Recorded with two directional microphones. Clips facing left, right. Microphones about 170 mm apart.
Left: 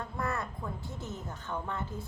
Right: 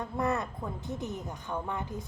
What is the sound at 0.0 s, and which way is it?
A woman's voice, 20° right (ahead or behind).